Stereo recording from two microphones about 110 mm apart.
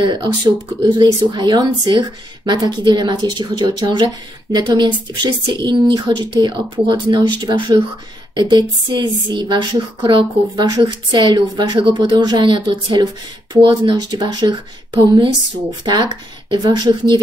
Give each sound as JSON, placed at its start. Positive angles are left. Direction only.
{"t": 0.0, "sound": "a woman's voice", "side_deg": -45}